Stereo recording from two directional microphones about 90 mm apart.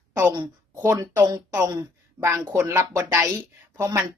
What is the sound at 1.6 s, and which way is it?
Speech, 50° right (ahead or behind).